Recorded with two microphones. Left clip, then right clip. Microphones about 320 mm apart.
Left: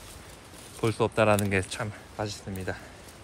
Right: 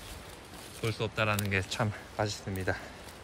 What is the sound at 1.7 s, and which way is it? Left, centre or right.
Speech, centre.